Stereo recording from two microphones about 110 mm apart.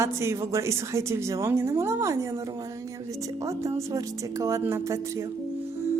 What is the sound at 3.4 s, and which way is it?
A woman's voice, 30° right (ahead or behind).